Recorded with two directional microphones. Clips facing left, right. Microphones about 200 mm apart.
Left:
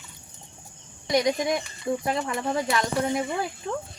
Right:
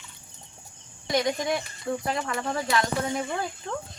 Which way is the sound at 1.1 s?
15° left (ahead or behind).